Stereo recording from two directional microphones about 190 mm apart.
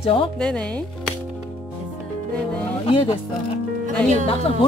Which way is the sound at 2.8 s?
25° left (ahead or behind).